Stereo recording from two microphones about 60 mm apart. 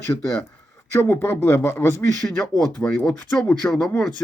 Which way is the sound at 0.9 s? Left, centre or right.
Left.